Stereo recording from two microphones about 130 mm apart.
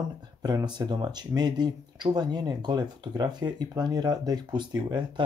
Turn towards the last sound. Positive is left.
turn(degrees=-35)  # may be behind; listen again after turning